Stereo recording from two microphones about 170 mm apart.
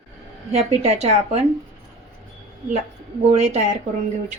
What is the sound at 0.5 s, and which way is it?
Speech, 40° right (ahead or behind).